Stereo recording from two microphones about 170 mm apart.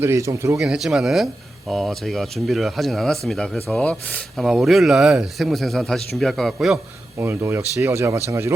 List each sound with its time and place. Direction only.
0.0 s speech: 15° right (ahead or behind)
0.6 s speech: centre (ahead or behind)
7.2 s speech: 15° right (ahead or behind)